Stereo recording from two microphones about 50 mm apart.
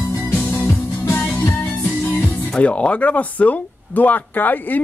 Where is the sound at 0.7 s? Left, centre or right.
Left.